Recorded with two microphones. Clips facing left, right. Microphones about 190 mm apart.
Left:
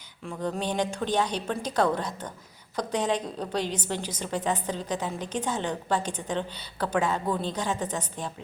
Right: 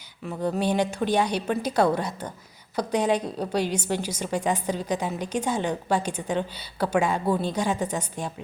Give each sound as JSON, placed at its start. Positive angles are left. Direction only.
{"t": 0.3, "sound": "a woman's voice", "side_deg": -5}